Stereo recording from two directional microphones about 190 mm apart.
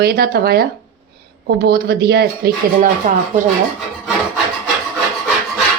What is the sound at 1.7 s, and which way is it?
Speech, 55° right (ahead or behind).